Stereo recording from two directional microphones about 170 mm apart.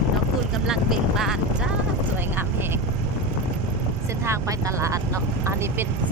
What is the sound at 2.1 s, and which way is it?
Vehicle, 10° right (ahead or behind).